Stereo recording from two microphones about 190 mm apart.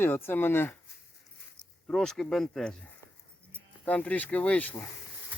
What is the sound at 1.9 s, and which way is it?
Speech, centre (ahead or behind).